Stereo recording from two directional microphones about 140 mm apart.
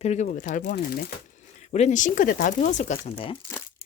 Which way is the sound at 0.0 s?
50° left (ahead or behind).